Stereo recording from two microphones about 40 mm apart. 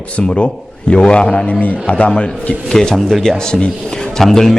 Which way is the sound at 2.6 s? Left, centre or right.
Centre.